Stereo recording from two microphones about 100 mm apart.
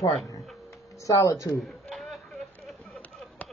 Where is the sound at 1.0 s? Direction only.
35° left (ahead or behind).